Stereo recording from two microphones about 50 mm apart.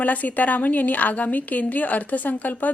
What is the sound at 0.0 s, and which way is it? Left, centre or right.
Speech, left.